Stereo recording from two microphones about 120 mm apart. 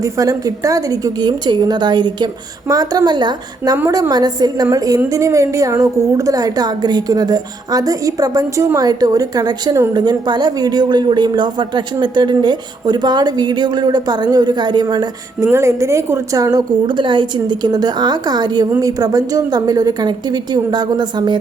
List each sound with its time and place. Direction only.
0.0 s speech: 30° right (ahead or behind)
15.4 s speech: 25° right (ahead or behind)